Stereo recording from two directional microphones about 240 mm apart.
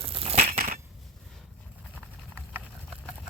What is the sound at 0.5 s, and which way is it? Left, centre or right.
Crushing, right.